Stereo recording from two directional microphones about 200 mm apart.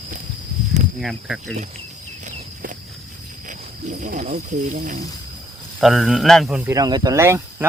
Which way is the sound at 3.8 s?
35° right (ahead or behind).